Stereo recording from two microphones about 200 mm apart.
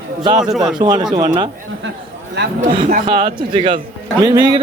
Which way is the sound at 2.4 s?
55° right (ahead or behind).